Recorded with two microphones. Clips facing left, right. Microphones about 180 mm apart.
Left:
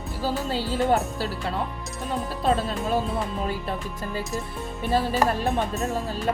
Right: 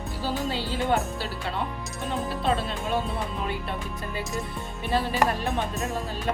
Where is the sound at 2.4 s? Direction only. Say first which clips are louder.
Left 5 dB; 40° left (ahead or behind).